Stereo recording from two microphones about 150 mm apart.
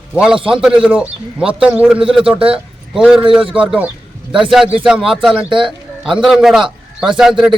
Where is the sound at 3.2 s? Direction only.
35° right (ahead or behind).